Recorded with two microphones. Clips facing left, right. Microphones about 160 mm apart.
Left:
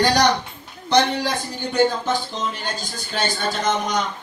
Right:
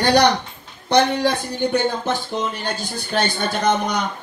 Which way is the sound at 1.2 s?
55° right (ahead or behind).